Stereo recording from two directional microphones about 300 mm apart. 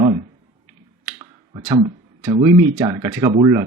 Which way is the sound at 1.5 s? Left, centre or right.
Centre.